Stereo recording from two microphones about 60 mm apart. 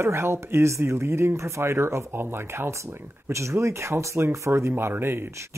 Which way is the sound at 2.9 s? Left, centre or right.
Right.